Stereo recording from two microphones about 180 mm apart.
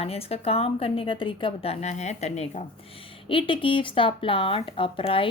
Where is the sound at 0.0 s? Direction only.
35° left (ahead or behind).